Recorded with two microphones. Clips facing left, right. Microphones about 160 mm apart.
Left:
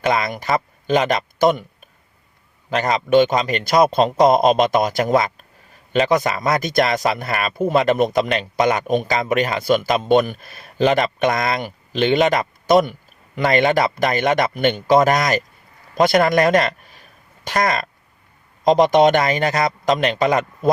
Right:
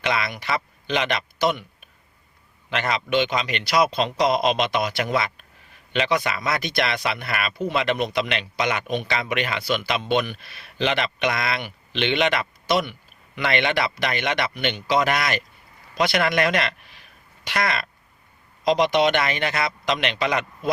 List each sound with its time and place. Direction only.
0.0 s a man's voice: 40° left (ahead or behind)